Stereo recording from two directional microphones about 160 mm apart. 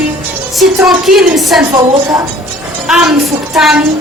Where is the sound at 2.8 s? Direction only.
5° right (ahead or behind).